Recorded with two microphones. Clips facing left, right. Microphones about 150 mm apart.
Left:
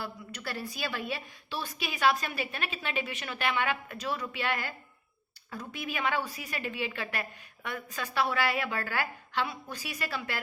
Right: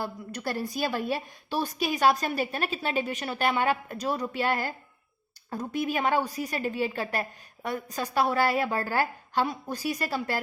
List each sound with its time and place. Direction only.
0.0 s a woman's voice: 45° right (ahead or behind)